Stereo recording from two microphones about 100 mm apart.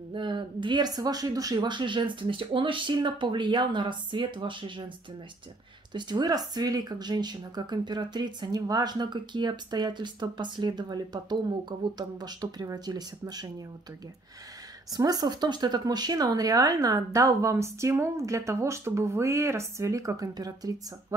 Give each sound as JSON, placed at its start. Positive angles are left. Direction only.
{"t": 0.1, "sound": "speech", "side_deg": -55}
{"t": 1.6, "sound": "speech", "side_deg": -50}
{"t": 5.9, "sound": "speech", "side_deg": -50}
{"t": 14.9, "sound": "speech", "side_deg": -40}